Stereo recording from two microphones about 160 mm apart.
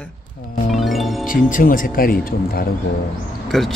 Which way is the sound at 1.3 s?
60° left (ahead or behind).